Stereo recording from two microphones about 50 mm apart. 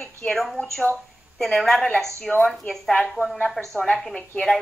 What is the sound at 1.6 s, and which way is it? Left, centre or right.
A woman's voice, centre.